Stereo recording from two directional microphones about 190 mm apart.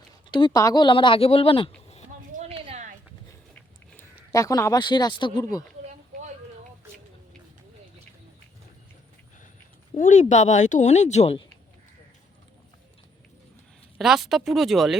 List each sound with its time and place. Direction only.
0.3 s speech: 25° left (ahead or behind)
2.3 s a sound: 35° right (ahead or behind)
3.5 s speech: 15° left (ahead or behind)
9.9 s speech: 40° left (ahead or behind)
14.0 s speech: centre (ahead or behind)